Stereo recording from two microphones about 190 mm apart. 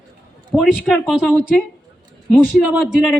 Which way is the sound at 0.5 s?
Centre (ahead or behind).